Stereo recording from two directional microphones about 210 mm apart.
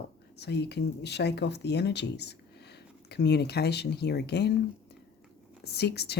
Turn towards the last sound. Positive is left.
turn(degrees=50)  # may be behind; listen again after turning